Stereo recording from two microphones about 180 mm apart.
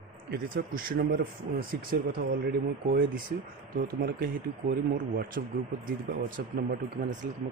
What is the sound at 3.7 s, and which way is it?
Speech, 55° right (ahead or behind).